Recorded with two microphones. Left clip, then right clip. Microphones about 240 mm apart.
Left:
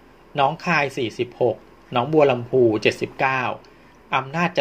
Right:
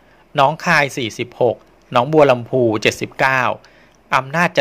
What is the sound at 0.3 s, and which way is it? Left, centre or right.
Speech, right.